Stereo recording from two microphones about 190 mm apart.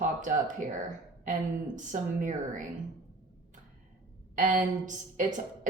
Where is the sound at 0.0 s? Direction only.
40° right (ahead or behind).